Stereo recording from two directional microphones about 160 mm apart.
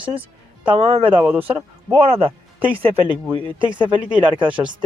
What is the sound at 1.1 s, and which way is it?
Speech, 10° right (ahead or behind).